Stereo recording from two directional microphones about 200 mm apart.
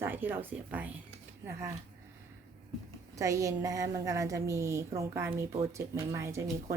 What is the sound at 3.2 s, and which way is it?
Speech, 15° right (ahead or behind).